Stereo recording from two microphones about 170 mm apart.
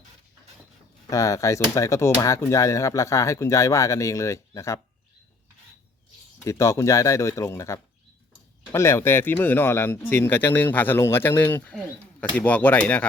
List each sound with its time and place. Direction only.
1.1 s speech: 20° left (ahead or behind)
6.4 s speech: 15° left (ahead or behind)